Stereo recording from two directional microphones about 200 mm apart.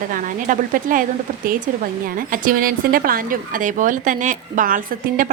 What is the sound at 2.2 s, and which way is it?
A woman's voice, 45° right (ahead or behind).